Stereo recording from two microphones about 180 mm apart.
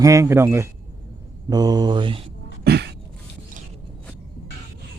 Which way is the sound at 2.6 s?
65° right (ahead or behind).